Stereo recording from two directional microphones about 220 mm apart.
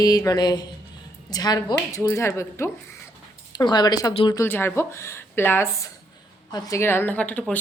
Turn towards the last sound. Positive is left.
turn(degrees=5)  # may be behind; listen again after turning